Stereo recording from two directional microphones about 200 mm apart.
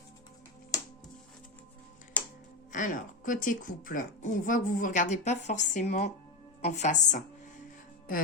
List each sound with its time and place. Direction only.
2.2 s music: 5° left (ahead or behind)
2.7 s a woman's voice: 40° left (ahead or behind)